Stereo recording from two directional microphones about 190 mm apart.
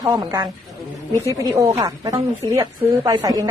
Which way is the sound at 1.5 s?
15° right (ahead or behind).